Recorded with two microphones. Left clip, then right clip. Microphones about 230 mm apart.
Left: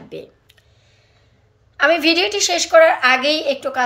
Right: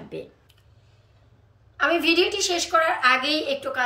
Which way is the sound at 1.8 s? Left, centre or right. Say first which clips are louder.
Left 6 dB; centre.